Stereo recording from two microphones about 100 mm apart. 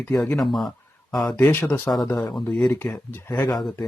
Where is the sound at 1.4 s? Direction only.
20° left (ahead or behind).